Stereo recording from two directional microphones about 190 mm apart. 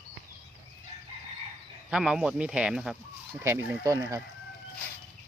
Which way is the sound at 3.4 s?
15° right (ahead or behind).